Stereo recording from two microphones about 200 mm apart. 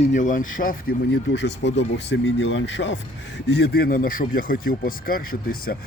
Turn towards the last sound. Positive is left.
turn(degrees=45)  # may be behind; listen again after turning